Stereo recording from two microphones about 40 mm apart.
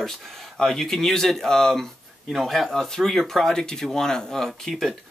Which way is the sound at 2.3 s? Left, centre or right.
Centre.